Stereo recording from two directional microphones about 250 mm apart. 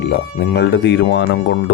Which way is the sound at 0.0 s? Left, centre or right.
Left.